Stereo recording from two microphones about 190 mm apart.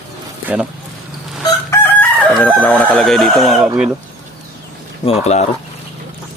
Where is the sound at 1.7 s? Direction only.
15° left (ahead or behind).